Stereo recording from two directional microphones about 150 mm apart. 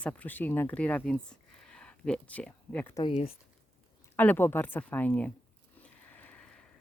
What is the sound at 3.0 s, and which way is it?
Speech, 40° left (ahead or behind).